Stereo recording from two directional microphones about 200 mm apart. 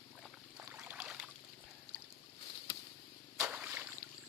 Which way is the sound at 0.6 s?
10° right (ahead or behind).